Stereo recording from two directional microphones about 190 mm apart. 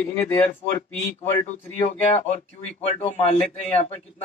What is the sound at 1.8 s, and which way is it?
Speech, 30° left (ahead or behind).